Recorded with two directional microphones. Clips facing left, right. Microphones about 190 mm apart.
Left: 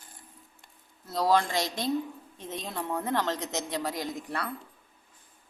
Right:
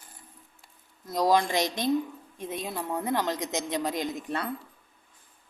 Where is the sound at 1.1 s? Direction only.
15° right (ahead or behind).